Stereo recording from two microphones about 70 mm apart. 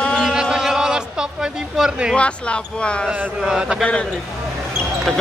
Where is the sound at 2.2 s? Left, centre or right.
Centre.